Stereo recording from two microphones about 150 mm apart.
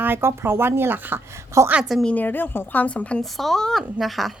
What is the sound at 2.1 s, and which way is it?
A woman's voice, 10° left (ahead or behind).